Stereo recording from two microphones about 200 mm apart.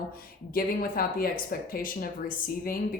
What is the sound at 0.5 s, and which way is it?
A woman's voice, 45° left (ahead or behind).